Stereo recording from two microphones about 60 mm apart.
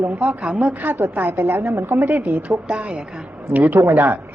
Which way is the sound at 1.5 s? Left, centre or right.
Right.